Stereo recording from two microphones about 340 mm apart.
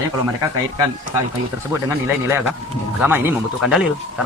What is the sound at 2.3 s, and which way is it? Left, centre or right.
Speech, centre.